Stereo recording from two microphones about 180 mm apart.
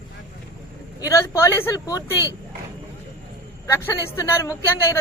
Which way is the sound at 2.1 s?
15° right (ahead or behind).